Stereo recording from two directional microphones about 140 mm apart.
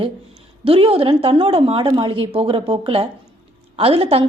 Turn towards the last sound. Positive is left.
turn(degrees=-45)  # may be behind; listen again after turning